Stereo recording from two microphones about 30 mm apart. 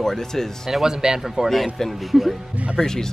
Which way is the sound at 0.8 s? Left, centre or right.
Right.